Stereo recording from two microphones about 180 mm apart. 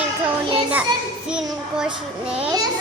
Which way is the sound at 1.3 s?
5° right (ahead or behind).